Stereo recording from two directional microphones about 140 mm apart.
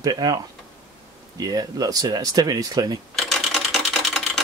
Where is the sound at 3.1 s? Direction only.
Centre (ahead or behind).